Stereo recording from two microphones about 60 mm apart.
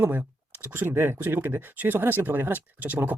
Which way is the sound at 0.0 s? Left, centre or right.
Right.